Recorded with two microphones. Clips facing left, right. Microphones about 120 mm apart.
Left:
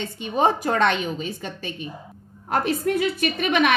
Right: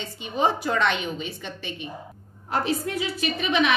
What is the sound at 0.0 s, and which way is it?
A woman's voice, 50° left (ahead or behind).